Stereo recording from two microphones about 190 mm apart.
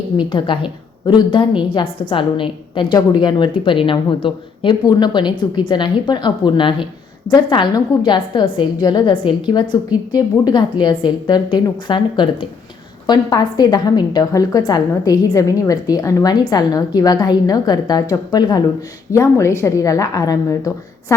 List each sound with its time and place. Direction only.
0.3 s a woman's voice: 25° left (ahead or behind)